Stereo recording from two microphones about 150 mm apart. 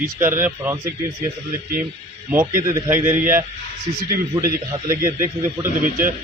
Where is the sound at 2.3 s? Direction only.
15° right (ahead or behind).